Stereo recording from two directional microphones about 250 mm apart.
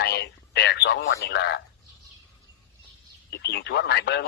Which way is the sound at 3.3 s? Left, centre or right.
Left.